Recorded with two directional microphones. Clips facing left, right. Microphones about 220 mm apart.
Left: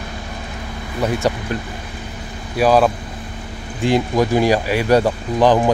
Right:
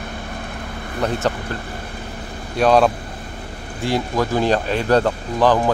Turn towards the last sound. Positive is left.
turn(degrees=15)  # may be behind; listen again after turning